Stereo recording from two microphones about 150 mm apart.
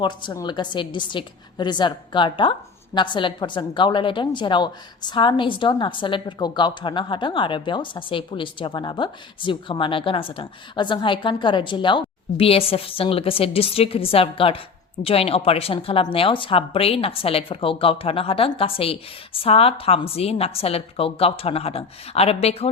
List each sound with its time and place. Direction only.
0.0 s a woman's voice: 30° left (ahead or behind)